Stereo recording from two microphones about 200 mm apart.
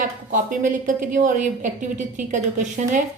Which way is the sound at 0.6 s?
40° right (ahead or behind).